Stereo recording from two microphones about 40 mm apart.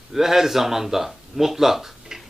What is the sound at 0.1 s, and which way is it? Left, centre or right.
Speech, centre.